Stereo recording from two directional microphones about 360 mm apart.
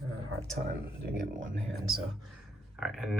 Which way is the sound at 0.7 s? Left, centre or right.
Right.